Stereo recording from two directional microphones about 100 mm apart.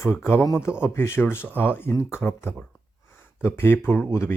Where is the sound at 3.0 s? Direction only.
20° left (ahead or behind).